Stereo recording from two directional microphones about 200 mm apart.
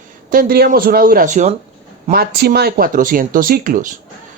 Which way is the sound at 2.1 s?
50° right (ahead or behind).